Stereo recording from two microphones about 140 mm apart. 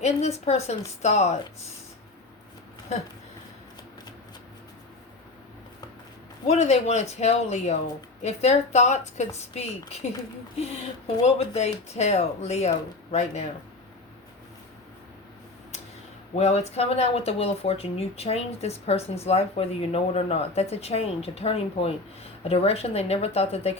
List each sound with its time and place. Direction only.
0.0 s speech: 50° left (ahead or behind)
6.5 s speech: 50° left (ahead or behind)
11.2 s speech: 50° left (ahead or behind)
16.4 s speech: 50° left (ahead or behind)